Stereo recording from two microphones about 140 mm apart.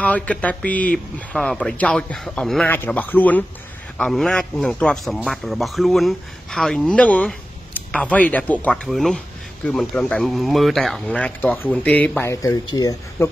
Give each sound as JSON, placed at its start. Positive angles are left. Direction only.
{"t": 0.0, "sound": "a man's voice", "side_deg": 10}
{"t": 12.2, "sound": "speech", "side_deg": 20}